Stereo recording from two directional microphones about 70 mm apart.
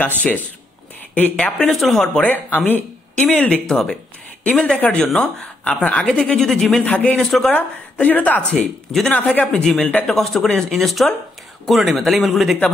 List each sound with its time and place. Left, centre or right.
1.1 s speech: centre
1.7 s speech: centre
2.2 s speech: left
3.2 s speech: centre
3.6 s speech: centre
6.8 s speech: centre
7.2 s speech: centre
7.5 s speech: left
8.9 s speech: centre
9.2 s speech: centre